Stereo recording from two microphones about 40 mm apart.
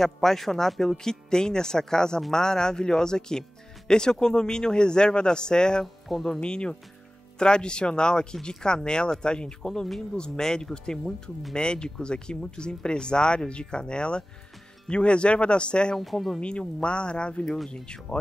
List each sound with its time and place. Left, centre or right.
0.0 s speech: centre
6.1 s speech: centre
6.4 s speech: left
16.0 s speech: centre
16.3 s speech: left